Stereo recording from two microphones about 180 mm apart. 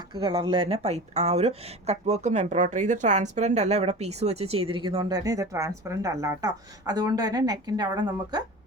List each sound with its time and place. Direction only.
0.1 s a woman's voice: 25° right (ahead or behind)